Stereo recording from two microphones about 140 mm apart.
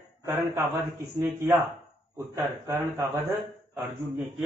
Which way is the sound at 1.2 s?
20° right (ahead or behind).